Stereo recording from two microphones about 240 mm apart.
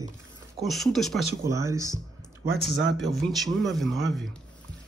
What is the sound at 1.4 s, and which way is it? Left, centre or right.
Speech, centre.